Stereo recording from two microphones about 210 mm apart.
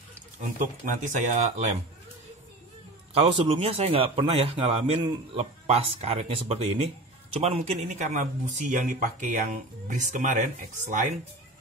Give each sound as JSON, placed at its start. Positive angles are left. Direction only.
{"t": 0.6, "sound": "speech", "side_deg": -35}
{"t": 3.2, "sound": "a man's voice", "side_deg": -25}